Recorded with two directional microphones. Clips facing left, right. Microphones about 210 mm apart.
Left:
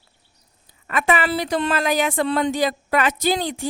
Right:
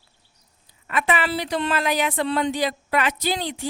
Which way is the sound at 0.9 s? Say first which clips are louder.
Left 3 dB; 45° left (ahead or behind).